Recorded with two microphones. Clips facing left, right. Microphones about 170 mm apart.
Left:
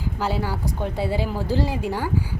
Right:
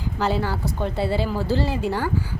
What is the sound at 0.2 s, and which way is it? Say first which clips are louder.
Speech: right 3 dB; 10° left (ahead or behind).